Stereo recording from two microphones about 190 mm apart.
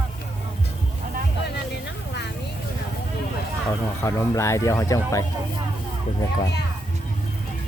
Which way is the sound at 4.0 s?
15° left (ahead or behind).